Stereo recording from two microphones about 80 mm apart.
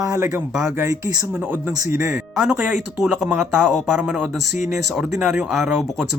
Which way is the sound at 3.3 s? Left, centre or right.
Right.